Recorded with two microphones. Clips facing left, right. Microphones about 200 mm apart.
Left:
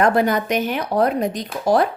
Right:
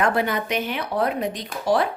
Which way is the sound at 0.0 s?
40° left (ahead or behind).